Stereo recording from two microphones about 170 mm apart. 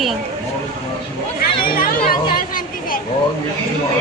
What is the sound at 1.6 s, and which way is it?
Chatter, 60° left (ahead or behind).